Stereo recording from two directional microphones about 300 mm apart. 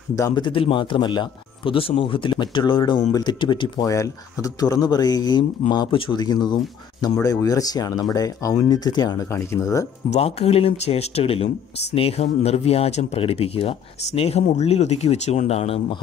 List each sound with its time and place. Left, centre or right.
0.1 s a man's voice: centre
10.1 s speech: centre